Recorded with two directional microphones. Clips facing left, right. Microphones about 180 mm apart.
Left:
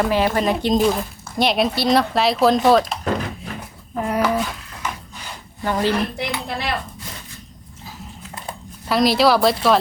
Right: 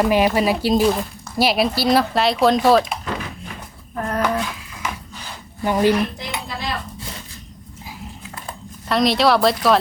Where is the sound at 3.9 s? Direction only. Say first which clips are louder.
Left 2 dB; 10° left (ahead or behind).